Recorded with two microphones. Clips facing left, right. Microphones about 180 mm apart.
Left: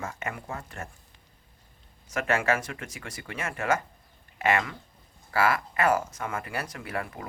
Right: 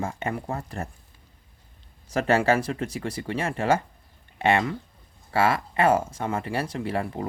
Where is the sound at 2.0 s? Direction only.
35° right (ahead or behind).